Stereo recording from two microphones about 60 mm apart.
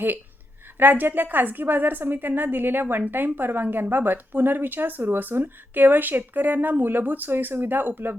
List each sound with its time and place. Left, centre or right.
0.8 s speech: right